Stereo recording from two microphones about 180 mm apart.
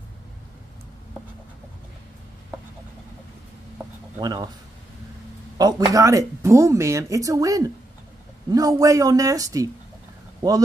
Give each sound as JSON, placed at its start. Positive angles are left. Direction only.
{"t": 4.2, "sound": "speech", "side_deg": -20}
{"t": 5.6, "sound": "speech", "side_deg": -20}